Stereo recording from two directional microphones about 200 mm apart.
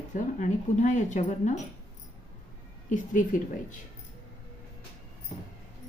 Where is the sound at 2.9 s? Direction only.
40° left (ahead or behind).